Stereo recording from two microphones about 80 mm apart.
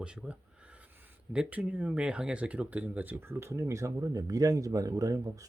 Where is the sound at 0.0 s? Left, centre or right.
Centre.